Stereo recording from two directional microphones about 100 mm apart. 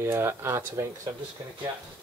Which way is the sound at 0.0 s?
25° right (ahead or behind).